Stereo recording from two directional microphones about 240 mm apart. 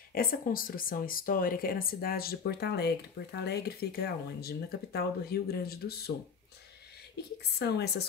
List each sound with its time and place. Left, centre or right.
0.1 s speech: left
7.5 s speech: left